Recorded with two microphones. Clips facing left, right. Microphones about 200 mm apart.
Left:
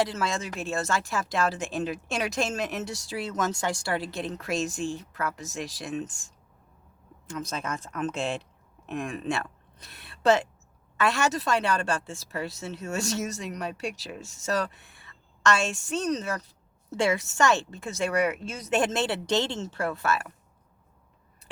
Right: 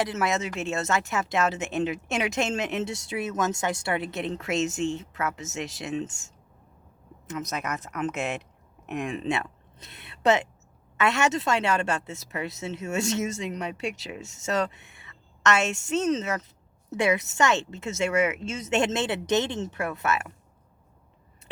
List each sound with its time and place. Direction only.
0.0 s speech: 20° right (ahead or behind)
7.4 s speech: 30° left (ahead or behind)
8.9 s speech: 20° right (ahead or behind)